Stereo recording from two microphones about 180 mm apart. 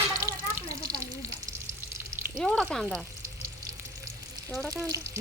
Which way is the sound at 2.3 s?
5° left (ahead or behind).